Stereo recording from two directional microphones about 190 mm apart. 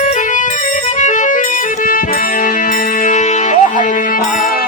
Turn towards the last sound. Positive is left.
turn(degrees=40)  # may be behind; listen again after turning